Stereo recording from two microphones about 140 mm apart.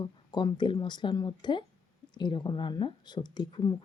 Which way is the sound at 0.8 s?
35° left (ahead or behind).